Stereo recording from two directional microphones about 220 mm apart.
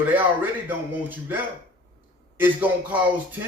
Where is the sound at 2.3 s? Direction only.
10° right (ahead or behind).